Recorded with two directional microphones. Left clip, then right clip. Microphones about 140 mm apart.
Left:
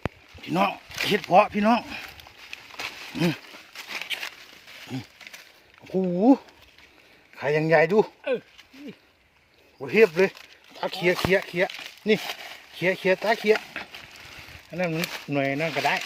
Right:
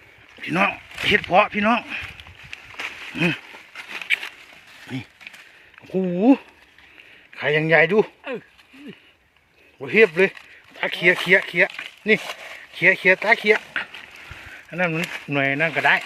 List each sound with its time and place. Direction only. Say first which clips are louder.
0.7 s speech: right 6 dB; 30° left (ahead or behind)
2.7 s a sound: right 3 dB; 10° left (ahead or behind)
3.1 s speech: right 5 dB; 25° left (ahead or behind)
3.8 s a sound: even; 50° left (ahead or behind)
6.0 s speech: right 2 dB; 10° left (ahead or behind)
9.8 s speech: right 3 dB; 5° left (ahead or behind)
10.8 s speech: right 5 dB; 20° left (ahead or behind)
14.7 s speech: right 4 dB; centre (ahead or behind)